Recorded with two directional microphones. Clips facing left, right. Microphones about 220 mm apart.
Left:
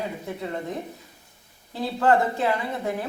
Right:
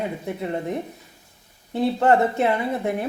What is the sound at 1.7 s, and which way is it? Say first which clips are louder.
A woman's voice: right 3 dB; 25° right (ahead or behind).